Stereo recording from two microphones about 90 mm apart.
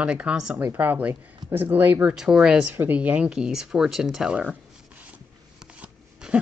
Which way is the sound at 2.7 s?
20° right (ahead or behind).